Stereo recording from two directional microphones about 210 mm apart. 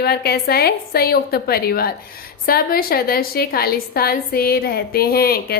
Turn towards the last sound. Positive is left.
turn(degrees=45)  # may be behind; listen again after turning